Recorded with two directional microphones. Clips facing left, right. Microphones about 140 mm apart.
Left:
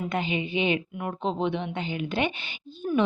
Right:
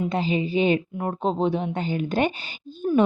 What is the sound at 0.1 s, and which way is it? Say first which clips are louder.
Speech: right 4 dB; 35° right (ahead or behind).